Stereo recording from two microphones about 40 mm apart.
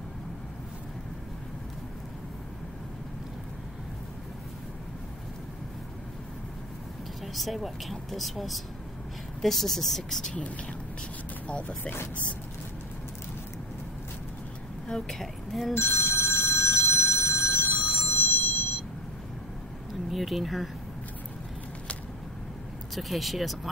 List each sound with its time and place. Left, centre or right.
7.3 s speech: centre
11.4 s speech: left
14.9 s speech: centre
15.7 s telephone bell ringing: left
20.1 s speech: centre
22.9 s speech: centre